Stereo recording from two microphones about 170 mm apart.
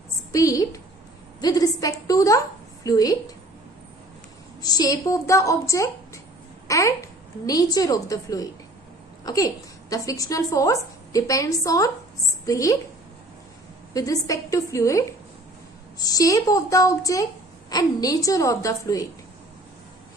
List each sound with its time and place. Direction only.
0.3 s a woman's voice: 20° left (ahead or behind)
1.4 s a sound: 20° left (ahead or behind)
2.8 s a woman's voice: 20° left (ahead or behind)
4.6 s a woman's voice: 20° left (ahead or behind)
13.9 s a woman's voice: 20° left (ahead or behind)